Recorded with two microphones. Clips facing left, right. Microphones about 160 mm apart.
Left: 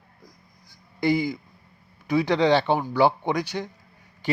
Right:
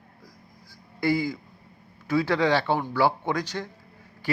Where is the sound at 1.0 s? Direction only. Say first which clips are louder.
Left 2 dB; 20° left (ahead or behind).